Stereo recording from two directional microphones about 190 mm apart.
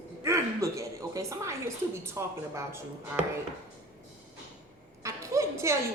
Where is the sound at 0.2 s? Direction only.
15° right (ahead or behind).